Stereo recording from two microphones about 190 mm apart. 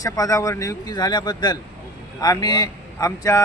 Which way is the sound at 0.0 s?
20° left (ahead or behind).